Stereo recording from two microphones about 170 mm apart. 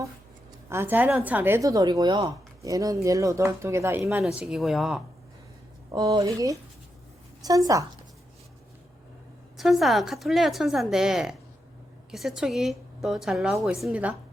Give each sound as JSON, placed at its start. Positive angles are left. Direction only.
{"t": 0.7, "sound": "a woman's voice", "side_deg": -15}
{"t": 4.4, "sound": "a woman's voice", "side_deg": 0}
{"t": 5.9, "sound": "speech", "side_deg": -20}
{"t": 9.6, "sound": "a woman's voice", "side_deg": 0}